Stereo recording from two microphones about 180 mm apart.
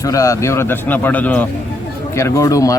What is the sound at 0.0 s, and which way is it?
Speech, 20° left (ahead or behind).